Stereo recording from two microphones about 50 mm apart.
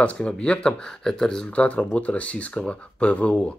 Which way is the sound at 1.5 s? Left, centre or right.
Left.